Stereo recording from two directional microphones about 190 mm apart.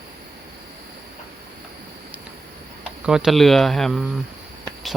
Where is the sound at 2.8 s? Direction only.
5° right (ahead or behind).